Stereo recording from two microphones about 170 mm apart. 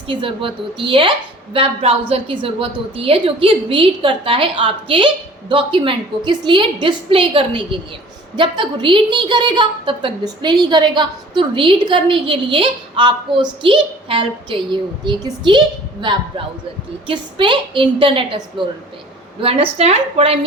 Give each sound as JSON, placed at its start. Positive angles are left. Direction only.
{"t": 0.1, "sound": "a woman's voice", "side_deg": -30}